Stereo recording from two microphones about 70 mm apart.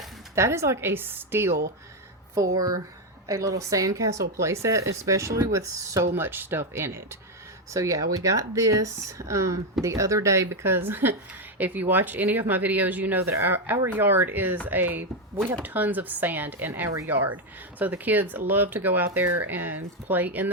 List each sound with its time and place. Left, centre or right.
0.3 s a woman's voice: right
2.3 s speech: right
6.1 s a woman's voice: right
7.7 s speech: right